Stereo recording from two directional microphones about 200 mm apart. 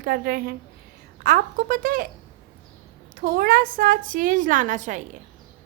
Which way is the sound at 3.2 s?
45° right (ahead or behind).